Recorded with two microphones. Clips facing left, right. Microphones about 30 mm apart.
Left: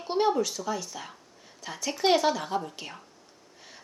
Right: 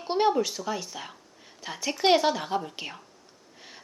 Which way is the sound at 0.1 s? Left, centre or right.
Centre.